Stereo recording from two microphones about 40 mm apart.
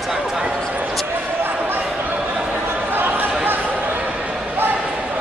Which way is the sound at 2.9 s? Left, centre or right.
Right.